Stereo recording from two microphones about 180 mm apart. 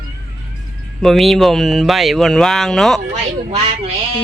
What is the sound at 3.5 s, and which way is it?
Speech, 35° right (ahead or behind).